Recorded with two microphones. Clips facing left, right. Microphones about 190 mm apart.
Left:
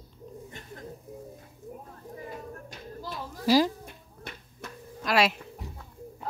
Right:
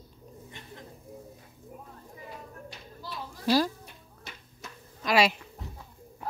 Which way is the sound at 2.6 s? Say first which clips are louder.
Left 4 dB; 45° left (ahead or behind).